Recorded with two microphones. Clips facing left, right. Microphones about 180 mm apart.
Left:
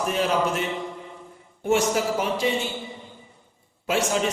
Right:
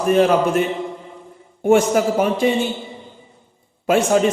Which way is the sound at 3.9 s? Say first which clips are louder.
Right 8 dB; 50° right (ahead or behind).